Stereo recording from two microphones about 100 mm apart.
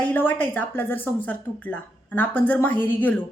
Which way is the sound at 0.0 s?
20° left (ahead or behind).